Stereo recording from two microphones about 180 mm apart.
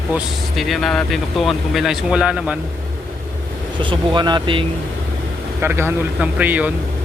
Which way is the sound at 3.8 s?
25° right (ahead or behind).